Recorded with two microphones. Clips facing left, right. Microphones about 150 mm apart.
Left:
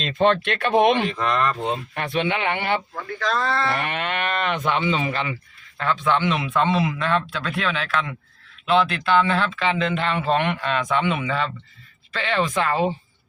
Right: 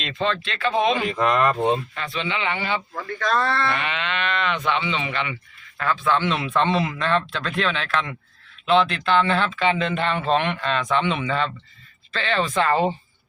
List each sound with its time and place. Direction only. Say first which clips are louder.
0.2 s speech: left 5 dB; 60° left (ahead or behind)
1.0 s speech: right 2 dB; 10° right (ahead or behind)
2.0 s speech: left 4 dB; 55° left (ahead or behind)
2.9 s speech: right 2 dB; 5° left (ahead or behind)
3.8 s speech: left 1 dB; 50° left (ahead or behind)
5.7 s speech: even; 20° left (ahead or behind)